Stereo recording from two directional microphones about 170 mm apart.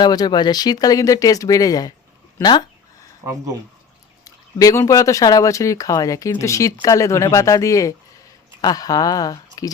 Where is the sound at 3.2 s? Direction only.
20° right (ahead or behind).